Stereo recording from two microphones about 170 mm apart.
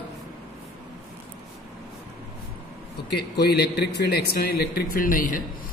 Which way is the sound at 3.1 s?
75° left (ahead or behind).